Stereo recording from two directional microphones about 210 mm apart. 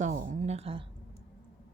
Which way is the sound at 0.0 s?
35° right (ahead or behind).